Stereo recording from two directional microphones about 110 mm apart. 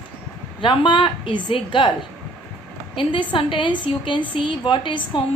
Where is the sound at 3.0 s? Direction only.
50° left (ahead or behind).